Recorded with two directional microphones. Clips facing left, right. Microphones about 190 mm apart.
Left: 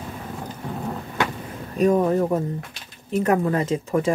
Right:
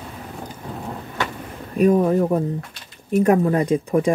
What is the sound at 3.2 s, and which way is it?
Speech, 15° right (ahead or behind).